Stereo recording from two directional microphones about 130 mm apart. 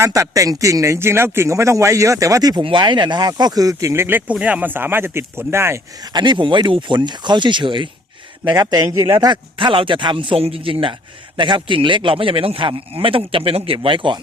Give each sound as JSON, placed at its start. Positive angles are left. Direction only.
{"t": 0.0, "sound": "speech", "side_deg": -25}
{"t": 6.1, "sound": "speech", "side_deg": -35}
{"t": 8.7, "sound": "speech", "side_deg": -30}
{"t": 9.3, "sound": "a man's voice", "side_deg": -40}